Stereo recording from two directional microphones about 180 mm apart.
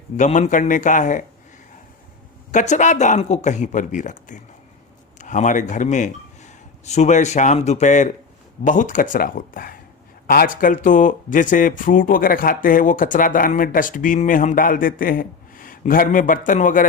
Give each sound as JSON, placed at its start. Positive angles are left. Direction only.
{"t": 0.2, "sound": "speech", "side_deg": 40}
{"t": 2.5, "sound": "a man's voice", "side_deg": 40}